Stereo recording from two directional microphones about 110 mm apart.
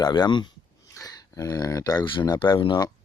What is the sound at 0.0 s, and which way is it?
Speech, 40° left (ahead or behind).